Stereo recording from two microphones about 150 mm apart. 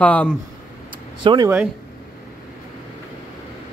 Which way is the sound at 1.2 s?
30° right (ahead or behind).